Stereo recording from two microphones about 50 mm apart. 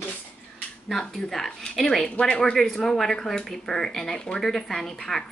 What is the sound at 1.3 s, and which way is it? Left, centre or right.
Speech, centre.